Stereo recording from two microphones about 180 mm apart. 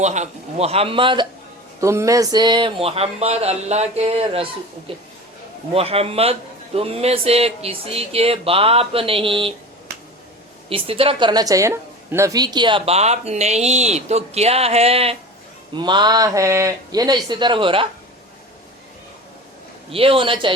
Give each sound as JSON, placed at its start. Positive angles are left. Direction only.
{"t": 0.0, "sound": "a woman's voice", "side_deg": -40}
{"t": 1.8, "sound": "a woman's voice", "side_deg": -15}
{"t": 10.7, "sound": "a woman's voice", "side_deg": -30}
{"t": 19.9, "sound": "speech", "side_deg": -30}